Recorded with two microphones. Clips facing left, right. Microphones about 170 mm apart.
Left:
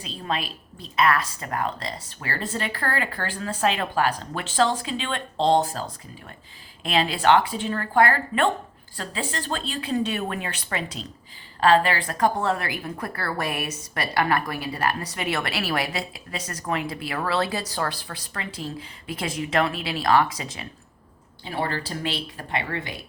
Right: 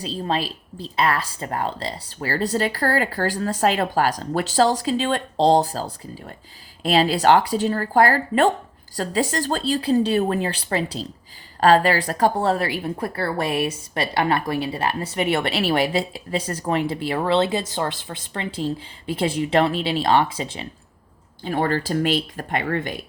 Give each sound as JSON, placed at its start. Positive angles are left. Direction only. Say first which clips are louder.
{"t": 0.0, "sound": "a woman's voice", "louder": "right 5 dB", "side_deg": -35}
{"t": 21.5, "sound": "speech", "louder": "right 7 dB", "side_deg": -45}